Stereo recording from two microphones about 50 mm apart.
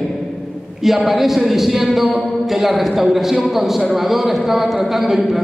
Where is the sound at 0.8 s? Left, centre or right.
Centre.